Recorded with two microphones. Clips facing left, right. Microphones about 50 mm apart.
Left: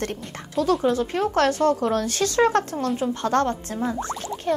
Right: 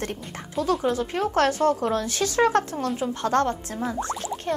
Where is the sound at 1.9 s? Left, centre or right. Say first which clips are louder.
Left 2 dB; left.